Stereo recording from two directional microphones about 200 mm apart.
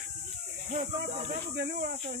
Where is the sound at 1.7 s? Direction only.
45° right (ahead or behind).